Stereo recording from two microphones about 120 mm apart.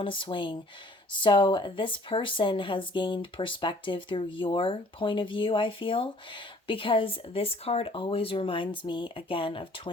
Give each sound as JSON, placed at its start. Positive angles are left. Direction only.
{"t": 0.0, "sound": "speech", "side_deg": 45}